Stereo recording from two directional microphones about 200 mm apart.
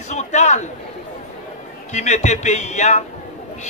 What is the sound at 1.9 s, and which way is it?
A man's voice, 35° left (ahead or behind).